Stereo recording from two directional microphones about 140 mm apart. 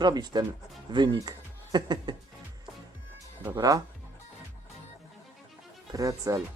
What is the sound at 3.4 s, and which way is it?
Speech, 25° right (ahead or behind).